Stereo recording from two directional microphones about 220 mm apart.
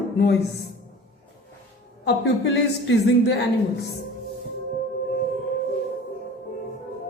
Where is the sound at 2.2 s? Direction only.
50° left (ahead or behind).